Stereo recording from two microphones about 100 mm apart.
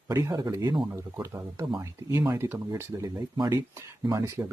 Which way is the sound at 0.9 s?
30° right (ahead or behind).